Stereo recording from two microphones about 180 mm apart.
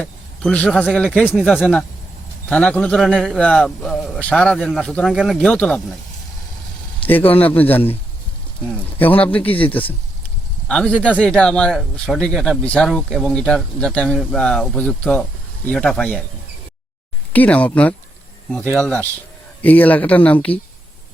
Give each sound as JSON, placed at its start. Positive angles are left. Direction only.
{"t": 0.0, "sound": "speech", "side_deg": 5}
{"t": 0.9, "sound": "speech", "side_deg": -5}
{"t": 1.1, "sound": "speech", "side_deg": 10}
{"t": 7.0, "sound": "speech", "side_deg": 10}
{"t": 17.3, "sound": "speech", "side_deg": 10}